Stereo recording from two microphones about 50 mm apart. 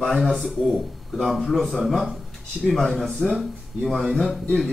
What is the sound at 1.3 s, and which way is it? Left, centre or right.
Speech, centre.